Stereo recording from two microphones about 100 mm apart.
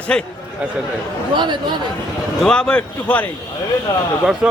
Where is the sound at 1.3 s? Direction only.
50° right (ahead or behind).